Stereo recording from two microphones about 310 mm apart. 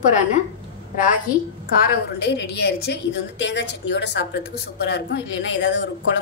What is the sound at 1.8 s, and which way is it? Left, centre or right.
A woman's voice, left.